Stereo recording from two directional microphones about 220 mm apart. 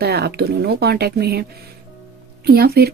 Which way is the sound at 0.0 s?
45° right (ahead or behind).